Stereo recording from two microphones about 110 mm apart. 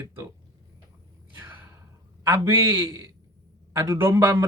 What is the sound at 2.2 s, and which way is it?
Speech, 20° right (ahead or behind).